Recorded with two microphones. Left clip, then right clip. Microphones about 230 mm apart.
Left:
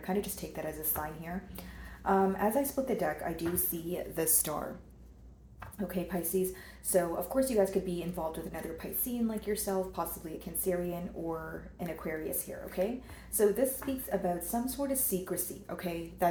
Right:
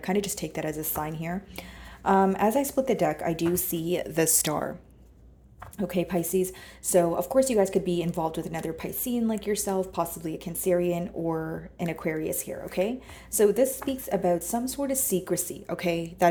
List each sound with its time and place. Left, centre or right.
0.0 s a woman's voice: right
5.7 s a woman's voice: right